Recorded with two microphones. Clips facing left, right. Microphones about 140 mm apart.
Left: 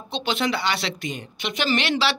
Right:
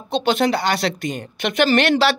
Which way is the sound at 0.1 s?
45° right (ahead or behind).